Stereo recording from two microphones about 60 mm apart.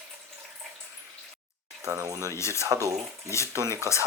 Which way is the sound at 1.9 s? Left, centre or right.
Right.